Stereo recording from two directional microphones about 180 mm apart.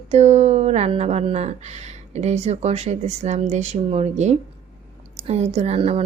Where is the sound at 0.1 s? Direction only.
40° right (ahead or behind).